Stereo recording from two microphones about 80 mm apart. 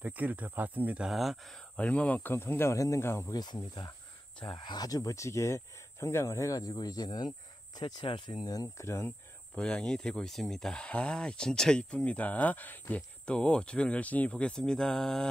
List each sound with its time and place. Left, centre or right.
0.0 s speech: centre
1.0 s speech: centre
1.8 s speech: centre; by 3.3 s left
3.3 s speech: left
4.4 s speech: left
7.7 s speech: left
8.7 s speech: left
9.6 s speech: centre
13.2 s speech: centre